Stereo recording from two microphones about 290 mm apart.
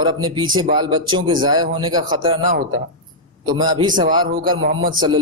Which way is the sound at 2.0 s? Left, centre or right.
Right.